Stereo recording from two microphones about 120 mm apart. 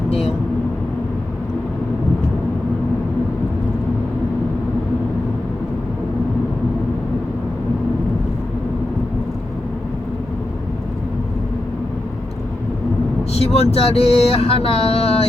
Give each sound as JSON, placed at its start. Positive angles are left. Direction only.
{"t": 0.1, "sound": "speech", "side_deg": 55}
{"t": 13.3, "sound": "speech", "side_deg": 60}